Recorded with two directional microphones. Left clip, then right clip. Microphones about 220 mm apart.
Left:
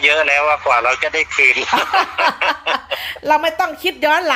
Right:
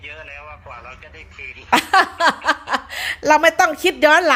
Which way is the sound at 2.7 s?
15° right (ahead or behind).